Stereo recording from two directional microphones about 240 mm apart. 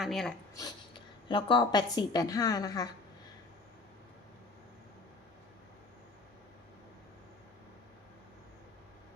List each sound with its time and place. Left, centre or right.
0.0 s speech: centre
0.5 s a woman's voice: centre